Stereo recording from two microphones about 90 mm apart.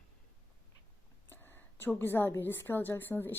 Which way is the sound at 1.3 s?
25° left (ahead or behind).